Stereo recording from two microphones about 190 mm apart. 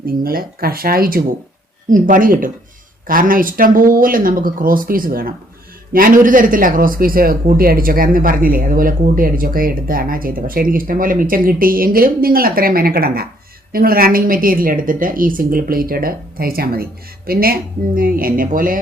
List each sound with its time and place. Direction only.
0.0 s speech: 50° right (ahead or behind)